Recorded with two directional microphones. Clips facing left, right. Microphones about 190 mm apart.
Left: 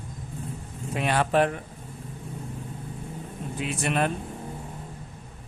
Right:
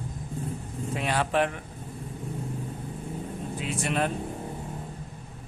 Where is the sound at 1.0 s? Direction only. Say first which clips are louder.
Left 3 dB; 60° left (ahead or behind).